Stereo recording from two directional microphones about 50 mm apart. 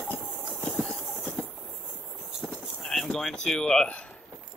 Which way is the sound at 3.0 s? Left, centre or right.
Centre.